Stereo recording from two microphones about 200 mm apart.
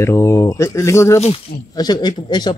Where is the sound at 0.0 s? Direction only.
15° left (ahead or behind).